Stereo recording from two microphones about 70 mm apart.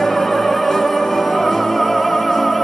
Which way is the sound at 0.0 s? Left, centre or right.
Centre.